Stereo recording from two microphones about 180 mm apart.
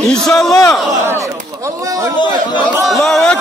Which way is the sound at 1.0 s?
15° right (ahead or behind).